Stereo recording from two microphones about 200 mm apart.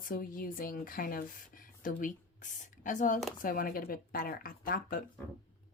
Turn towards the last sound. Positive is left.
turn(degrees=45)  # may be behind; listen again after turning